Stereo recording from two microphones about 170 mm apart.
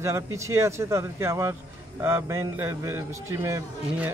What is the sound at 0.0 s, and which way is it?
Speech, 15° right (ahead or behind).